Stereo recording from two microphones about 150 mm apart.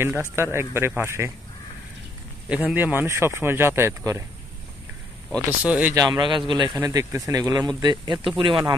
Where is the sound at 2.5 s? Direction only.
10° right (ahead or behind).